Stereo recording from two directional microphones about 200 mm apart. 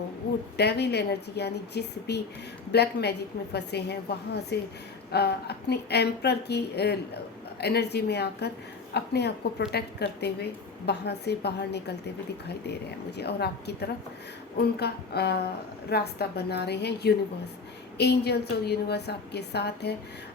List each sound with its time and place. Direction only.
0.5 s a woman's voice: 55° left (ahead or behind)